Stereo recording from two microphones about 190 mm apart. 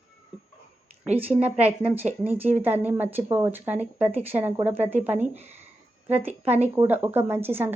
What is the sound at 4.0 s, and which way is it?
Speech, 35° right (ahead or behind).